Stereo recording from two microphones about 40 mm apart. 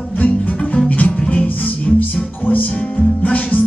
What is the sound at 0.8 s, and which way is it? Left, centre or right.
Music, left.